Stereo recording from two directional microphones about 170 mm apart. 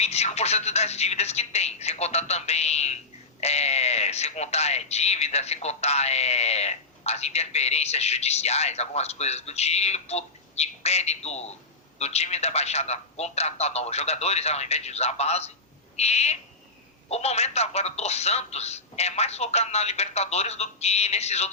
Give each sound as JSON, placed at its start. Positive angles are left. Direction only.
{"t": 0.0, "sound": "speech", "side_deg": 40}